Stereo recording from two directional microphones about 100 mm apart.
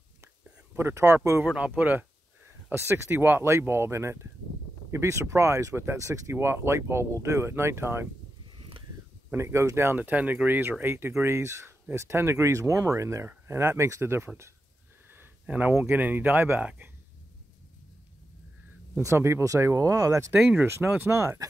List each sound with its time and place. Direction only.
0.7 s speech: 25° right (ahead or behind)
1.4 s speech: 10° right (ahead or behind)
8.5 s a sound: 60° right (ahead or behind)
9.3 s speech: 25° right (ahead or behind)
15.1 s speech: 15° right (ahead or behind)
18.9 s speech: 30° right (ahead or behind)